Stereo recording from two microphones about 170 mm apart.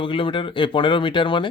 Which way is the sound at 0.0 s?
30° left (ahead or behind).